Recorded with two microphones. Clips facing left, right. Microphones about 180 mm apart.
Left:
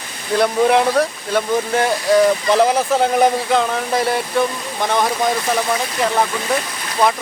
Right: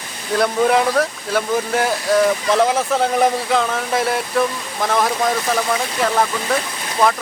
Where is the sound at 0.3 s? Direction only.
Centre (ahead or behind).